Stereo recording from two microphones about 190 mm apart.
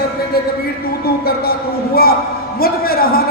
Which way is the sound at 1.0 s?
55° left (ahead or behind).